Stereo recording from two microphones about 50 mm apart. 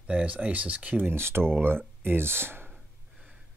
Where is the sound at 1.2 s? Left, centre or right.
Right.